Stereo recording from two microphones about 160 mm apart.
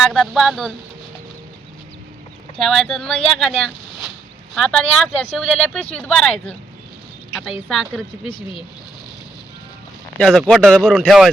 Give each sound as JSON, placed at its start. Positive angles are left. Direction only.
{"t": 0.1, "sound": "speech", "side_deg": 0}
{"t": 2.6, "sound": "speech", "side_deg": 0}
{"t": 7.7, "sound": "speech", "side_deg": 0}
{"t": 10.2, "sound": "speech", "side_deg": 5}